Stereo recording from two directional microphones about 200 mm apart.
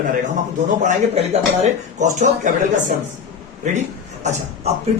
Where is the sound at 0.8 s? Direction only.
35° right (ahead or behind).